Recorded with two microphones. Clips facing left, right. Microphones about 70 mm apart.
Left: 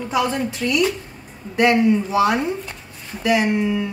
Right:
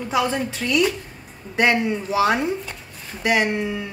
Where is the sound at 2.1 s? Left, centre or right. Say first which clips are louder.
Left 1 dB; centre.